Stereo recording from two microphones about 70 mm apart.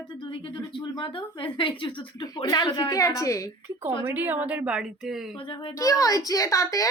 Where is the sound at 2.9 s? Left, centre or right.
Left.